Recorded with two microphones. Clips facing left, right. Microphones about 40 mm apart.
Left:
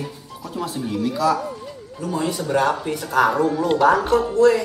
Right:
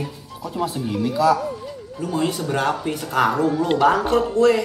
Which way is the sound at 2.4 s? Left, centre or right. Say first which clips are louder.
Left 2 dB; centre.